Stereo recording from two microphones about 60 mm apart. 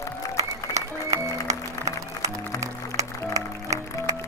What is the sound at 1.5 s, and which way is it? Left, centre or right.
Music, right.